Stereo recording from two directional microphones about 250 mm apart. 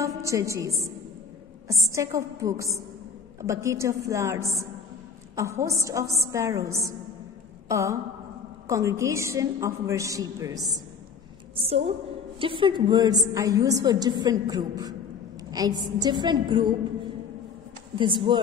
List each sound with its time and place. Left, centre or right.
0.0 s a woman's voice: centre
1.9 s a woman's voice: centre
7.6 s a sound: centre
8.6 s a woman's voice: centre
11.6 s a woman's voice: right
17.9 s speech: centre